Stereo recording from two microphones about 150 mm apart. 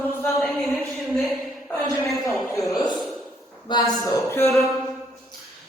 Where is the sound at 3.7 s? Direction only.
30° left (ahead or behind).